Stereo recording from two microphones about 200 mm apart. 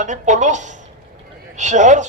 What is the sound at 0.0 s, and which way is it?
A man's voice, 40° right (ahead or behind).